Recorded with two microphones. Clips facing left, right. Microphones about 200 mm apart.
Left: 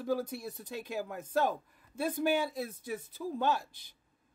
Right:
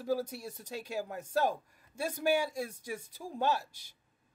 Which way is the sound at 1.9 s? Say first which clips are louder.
Left 3 dB; 5° left (ahead or behind).